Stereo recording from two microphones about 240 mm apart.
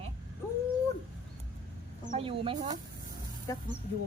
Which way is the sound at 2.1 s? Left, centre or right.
Right.